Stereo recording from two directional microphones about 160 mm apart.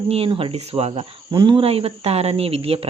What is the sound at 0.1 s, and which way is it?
Speech, 35° right (ahead or behind).